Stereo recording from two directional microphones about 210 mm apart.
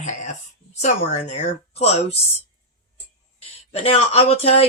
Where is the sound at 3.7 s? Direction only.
30° left (ahead or behind).